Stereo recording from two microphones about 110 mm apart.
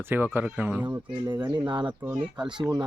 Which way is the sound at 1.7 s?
45° right (ahead or behind).